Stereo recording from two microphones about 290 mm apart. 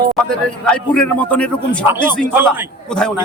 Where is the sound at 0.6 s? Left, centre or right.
Centre.